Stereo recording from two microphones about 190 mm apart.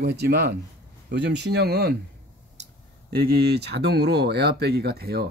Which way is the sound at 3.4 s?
60° right (ahead or behind).